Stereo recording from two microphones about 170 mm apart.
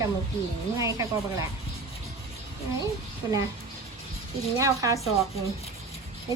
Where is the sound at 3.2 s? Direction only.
20° right (ahead or behind).